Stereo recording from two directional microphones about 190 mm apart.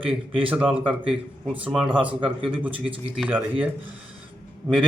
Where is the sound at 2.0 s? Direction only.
5° right (ahead or behind).